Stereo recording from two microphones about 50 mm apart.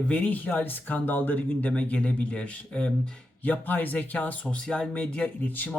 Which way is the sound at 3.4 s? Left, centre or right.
Left.